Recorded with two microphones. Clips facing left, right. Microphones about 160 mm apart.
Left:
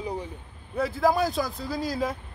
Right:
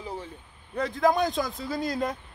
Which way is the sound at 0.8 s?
5° left (ahead or behind).